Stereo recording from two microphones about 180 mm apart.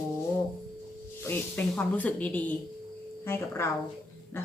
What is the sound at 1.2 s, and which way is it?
Speech, 10° left (ahead or behind).